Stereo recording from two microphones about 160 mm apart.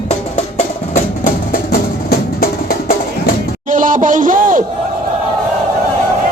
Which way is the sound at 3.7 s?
55° right (ahead or behind).